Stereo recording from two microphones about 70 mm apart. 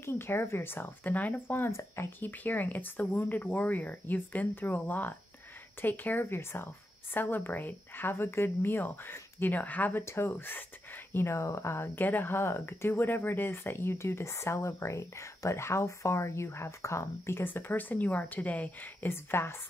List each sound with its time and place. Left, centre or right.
0.0 s speech: left
11.1 s speech: left